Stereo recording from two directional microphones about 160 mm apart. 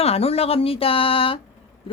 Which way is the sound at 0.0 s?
40° left (ahead or behind).